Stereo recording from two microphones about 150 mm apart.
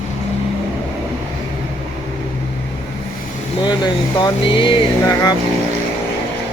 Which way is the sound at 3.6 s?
30° left (ahead or behind).